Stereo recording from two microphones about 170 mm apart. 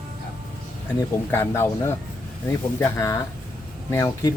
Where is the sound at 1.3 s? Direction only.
15° left (ahead or behind).